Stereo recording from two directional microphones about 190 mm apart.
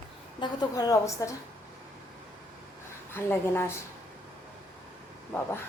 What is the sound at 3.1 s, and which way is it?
Speech, 10° left (ahead or behind).